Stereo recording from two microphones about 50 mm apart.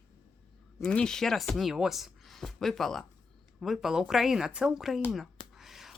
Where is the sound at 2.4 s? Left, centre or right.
Centre.